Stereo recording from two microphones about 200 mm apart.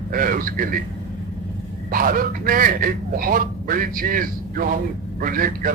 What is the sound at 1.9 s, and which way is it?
A man's voice, 45° right (ahead or behind).